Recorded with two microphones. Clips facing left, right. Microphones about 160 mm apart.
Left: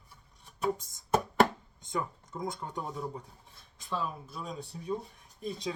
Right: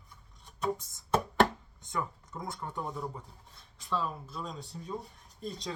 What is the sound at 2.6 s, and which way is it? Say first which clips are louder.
Speech: even; 15° left (ahead or behind).